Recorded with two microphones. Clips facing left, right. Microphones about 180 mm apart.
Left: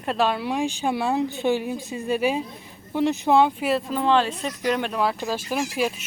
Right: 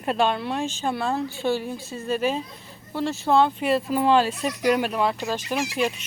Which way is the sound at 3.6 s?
Centre (ahead or behind).